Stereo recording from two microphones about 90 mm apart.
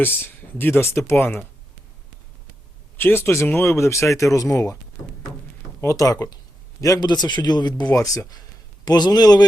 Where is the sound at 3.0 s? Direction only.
25° left (ahead or behind).